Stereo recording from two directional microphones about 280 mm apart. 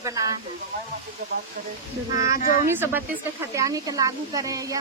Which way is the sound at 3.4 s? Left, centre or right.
Centre.